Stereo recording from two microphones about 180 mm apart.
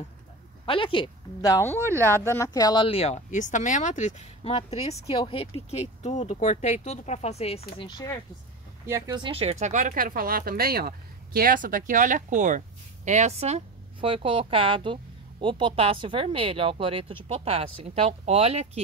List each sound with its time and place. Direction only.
0.7 s speech: 30° left (ahead or behind)
1.8 s speech: 15° right (ahead or behind)
2.2 s speech: 15° left (ahead or behind); by 7.6 s 35° left (ahead or behind)
7.8 s speech: 20° left (ahead or behind)
8.8 s speech: 15° right (ahead or behind); by 18.7 s 35° right (ahead or behind)